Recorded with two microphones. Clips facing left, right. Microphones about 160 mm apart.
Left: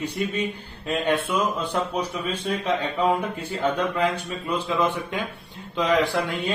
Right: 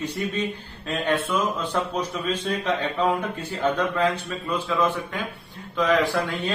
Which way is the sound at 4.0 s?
15° left (ahead or behind).